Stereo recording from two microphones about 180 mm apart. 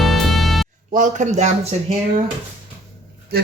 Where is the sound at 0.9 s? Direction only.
45° right (ahead or behind).